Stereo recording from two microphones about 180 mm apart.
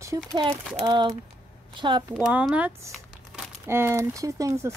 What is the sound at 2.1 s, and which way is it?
Speech, 5° right (ahead or behind).